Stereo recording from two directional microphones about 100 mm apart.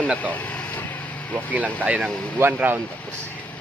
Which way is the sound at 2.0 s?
10° left (ahead or behind).